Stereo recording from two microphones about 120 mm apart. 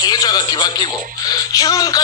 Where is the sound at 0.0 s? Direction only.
35° left (ahead or behind).